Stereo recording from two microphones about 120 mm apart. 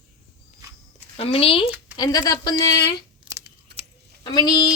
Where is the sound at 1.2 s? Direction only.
55° left (ahead or behind).